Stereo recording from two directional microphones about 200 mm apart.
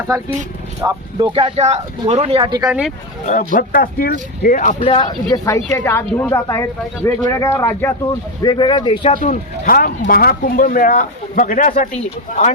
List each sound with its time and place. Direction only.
0.8 s speech: 15° right (ahead or behind)
1.3 s speech: 25° right (ahead or behind)
2.6 s speech: 5° right (ahead or behind)
3.2 s speech: 40° left (ahead or behind)
4.9 s a woman's voice: 20° left (ahead or behind)
9.1 s speech: 40° left (ahead or behind)